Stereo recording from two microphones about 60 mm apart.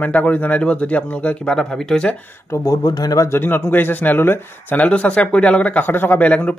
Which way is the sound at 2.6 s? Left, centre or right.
Left.